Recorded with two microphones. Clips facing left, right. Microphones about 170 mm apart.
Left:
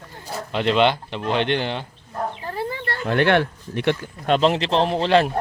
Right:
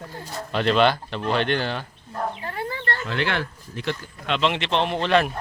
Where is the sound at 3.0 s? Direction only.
55° left (ahead or behind); by 5.3 s 30° left (ahead or behind).